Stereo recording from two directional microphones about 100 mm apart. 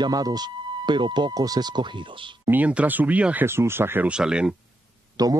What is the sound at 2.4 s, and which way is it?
Speech, 15° right (ahead or behind).